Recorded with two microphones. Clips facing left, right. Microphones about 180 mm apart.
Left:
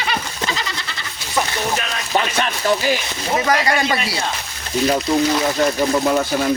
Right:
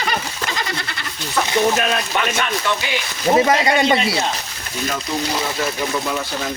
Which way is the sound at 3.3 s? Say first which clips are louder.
Right 2 dB; 25° right (ahead or behind).